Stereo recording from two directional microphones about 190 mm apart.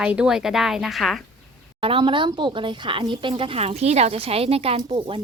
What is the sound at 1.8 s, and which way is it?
A woman's voice, 25° right (ahead or behind).